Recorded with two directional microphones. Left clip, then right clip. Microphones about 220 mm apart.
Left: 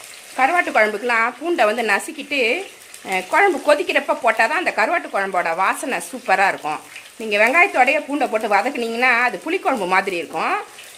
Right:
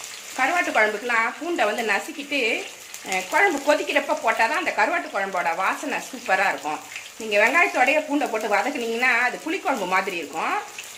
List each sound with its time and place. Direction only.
0.3 s speech: 50° left (ahead or behind)